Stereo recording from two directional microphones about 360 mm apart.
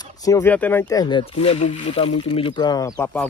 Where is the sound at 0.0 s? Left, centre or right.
Centre.